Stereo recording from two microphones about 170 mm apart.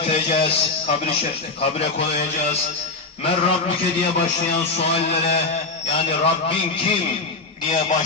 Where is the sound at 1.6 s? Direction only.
35° left (ahead or behind).